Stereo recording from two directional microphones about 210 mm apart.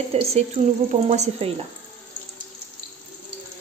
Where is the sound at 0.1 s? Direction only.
30° right (ahead or behind).